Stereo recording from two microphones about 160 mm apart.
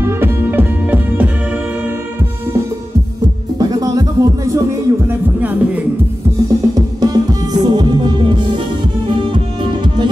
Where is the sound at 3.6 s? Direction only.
25° right (ahead or behind).